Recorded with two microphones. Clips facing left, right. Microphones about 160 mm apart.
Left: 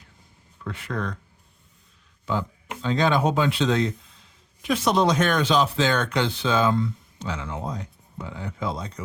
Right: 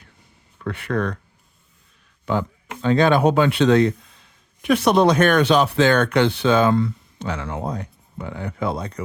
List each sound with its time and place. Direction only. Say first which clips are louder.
0.6 s speech: right 7 dB; 65° right (ahead or behind)
2.2 s speech: right 4 dB; 60° right (ahead or behind)